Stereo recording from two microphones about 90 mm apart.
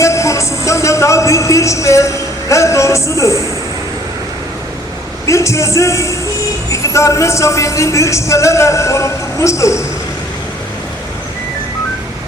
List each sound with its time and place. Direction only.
0.0 s music: 35° left (ahead or behind)
5.2 s speech: 35° left (ahead or behind)